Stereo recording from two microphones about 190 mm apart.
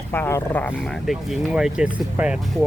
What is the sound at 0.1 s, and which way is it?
Speech, 10° left (ahead or behind).